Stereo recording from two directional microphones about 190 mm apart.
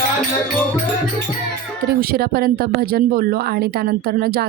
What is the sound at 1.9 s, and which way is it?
Speech, 55° right (ahead or behind).